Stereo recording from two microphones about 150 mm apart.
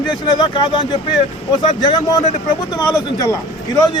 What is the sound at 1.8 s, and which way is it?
Speech, 30° left (ahead or behind).